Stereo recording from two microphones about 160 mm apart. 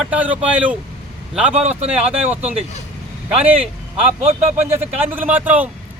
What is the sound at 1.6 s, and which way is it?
Speech, 40° right (ahead or behind).